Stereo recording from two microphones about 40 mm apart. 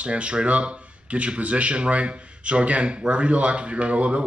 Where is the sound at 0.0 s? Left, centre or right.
Right.